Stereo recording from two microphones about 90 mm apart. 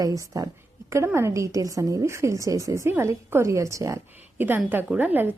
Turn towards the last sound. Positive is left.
turn(degrees=-20)  # may be behind; listen again after turning